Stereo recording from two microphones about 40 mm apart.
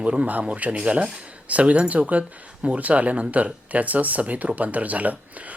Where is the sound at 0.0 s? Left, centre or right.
Right.